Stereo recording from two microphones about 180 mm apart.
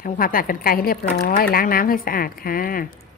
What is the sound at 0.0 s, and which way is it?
Speech, 50° left (ahead or behind).